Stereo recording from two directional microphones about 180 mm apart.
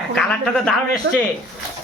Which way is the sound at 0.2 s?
5° left (ahead or behind).